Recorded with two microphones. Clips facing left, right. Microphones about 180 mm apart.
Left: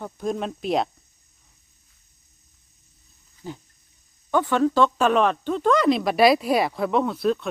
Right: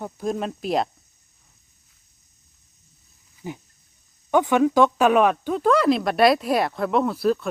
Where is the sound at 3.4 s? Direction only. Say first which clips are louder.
Right 2 dB; 15° right (ahead or behind).